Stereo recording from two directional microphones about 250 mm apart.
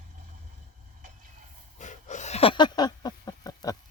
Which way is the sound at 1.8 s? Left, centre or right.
Left.